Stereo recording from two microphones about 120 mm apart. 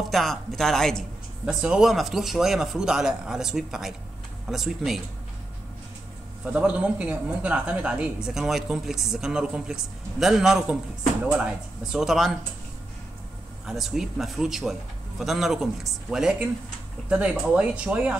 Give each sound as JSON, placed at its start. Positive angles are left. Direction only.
{"t": 0.1, "sound": "a man's voice", "side_deg": 0}
{"t": 1.4, "sound": "a man's voice", "side_deg": -5}
{"t": 6.5, "sound": "a man's voice", "side_deg": -10}
{"t": 13.7, "sound": "a man's voice", "side_deg": 0}